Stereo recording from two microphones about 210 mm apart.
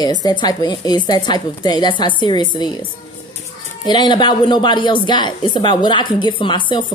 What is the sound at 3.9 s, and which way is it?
A woman's voice, 20° left (ahead or behind).